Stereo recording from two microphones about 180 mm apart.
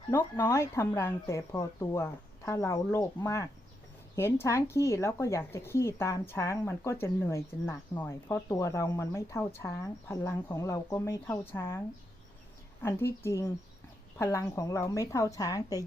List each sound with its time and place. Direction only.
0.3 s speech: 15° left (ahead or behind)
12.8 s a woman's voice: 15° left (ahead or behind)